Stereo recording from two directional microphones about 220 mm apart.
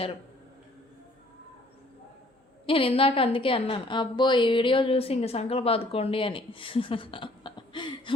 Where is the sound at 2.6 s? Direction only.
25° left (ahead or behind).